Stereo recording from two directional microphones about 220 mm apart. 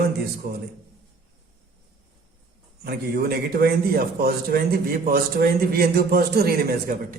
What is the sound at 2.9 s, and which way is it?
A man's voice, 45° right (ahead or behind).